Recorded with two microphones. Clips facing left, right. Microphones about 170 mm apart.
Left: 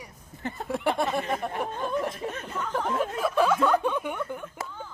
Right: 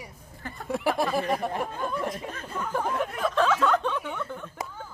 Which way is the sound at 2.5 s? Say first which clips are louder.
Right 1 dB; 10° right (ahead or behind).